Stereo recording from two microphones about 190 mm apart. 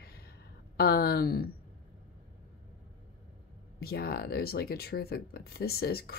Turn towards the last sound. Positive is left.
turn(degrees=55)  # may be behind; listen again after turning